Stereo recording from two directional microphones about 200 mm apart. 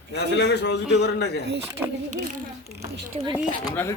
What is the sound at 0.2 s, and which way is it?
A man's voice, 60° left (ahead or behind).